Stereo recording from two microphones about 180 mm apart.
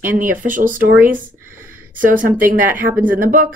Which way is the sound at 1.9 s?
50° right (ahead or behind).